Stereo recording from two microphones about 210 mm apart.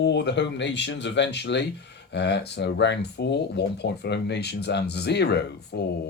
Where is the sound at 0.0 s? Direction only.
55° left (ahead or behind).